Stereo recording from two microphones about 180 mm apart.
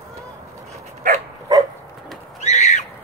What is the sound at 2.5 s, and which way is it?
Squawk, 40° left (ahead or behind).